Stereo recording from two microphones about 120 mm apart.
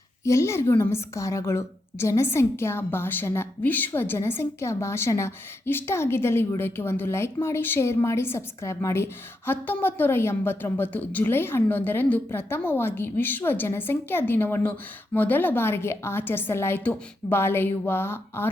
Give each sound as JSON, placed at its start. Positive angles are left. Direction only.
{"t": 0.3, "sound": "a woman's voice", "side_deg": 25}